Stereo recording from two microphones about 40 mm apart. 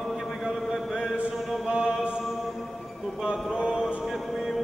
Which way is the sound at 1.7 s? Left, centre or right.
Right.